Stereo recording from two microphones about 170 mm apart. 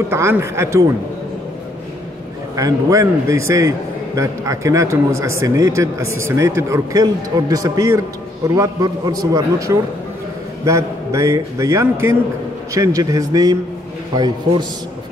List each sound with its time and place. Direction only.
0.1 s a man's voice: 15° right (ahead or behind)
2.5 s a man's voice: 20° right (ahead or behind)